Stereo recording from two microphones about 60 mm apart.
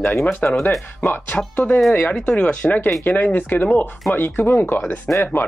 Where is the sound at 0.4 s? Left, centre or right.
Left.